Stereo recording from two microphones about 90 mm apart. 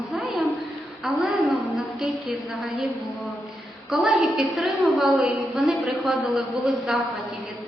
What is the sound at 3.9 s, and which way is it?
A woman's voice, centre (ahead or behind).